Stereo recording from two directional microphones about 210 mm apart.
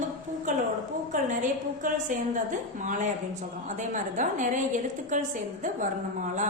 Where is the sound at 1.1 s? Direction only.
35° right (ahead or behind).